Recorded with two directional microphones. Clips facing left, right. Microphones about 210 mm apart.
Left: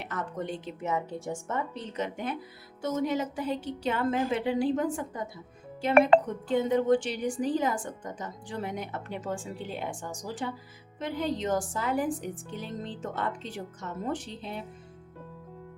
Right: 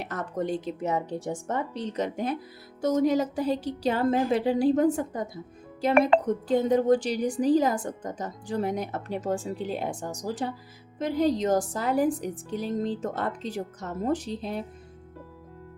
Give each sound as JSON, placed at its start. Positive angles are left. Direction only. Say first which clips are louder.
{"t": 0.0, "sound": "a woman's voice", "louder": "right 4 dB", "side_deg": -40}